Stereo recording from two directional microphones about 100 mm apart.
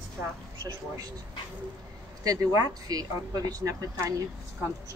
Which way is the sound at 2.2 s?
35° right (ahead or behind).